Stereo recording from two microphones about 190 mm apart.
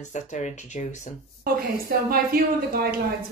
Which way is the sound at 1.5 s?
50° right (ahead or behind).